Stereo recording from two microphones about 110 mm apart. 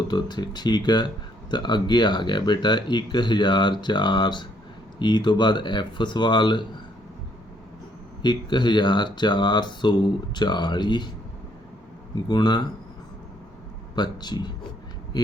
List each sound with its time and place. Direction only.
0.1 s speech: 40° left (ahead or behind)
8.2 s speech: 45° left (ahead or behind)
12.3 s speech: 40° left (ahead or behind)
13.9 s speech: 40° left (ahead or behind)